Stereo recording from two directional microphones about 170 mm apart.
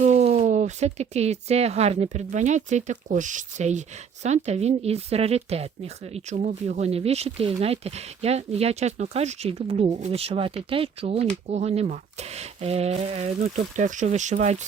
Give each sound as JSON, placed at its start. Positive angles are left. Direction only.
{"t": 0.0, "sound": "speech", "side_deg": -40}